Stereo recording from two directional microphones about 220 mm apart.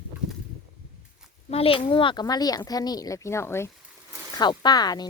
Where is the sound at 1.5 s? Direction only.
25° left (ahead or behind).